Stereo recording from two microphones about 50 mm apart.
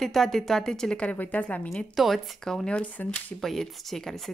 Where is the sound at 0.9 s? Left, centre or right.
Left.